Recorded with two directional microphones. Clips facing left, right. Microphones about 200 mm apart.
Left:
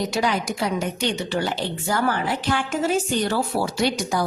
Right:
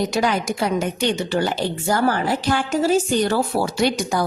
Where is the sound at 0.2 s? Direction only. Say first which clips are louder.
Right 1 dB; 50° right (ahead or behind).